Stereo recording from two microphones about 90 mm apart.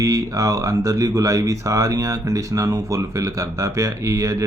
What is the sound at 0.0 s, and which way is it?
A man's voice, 40° right (ahead or behind).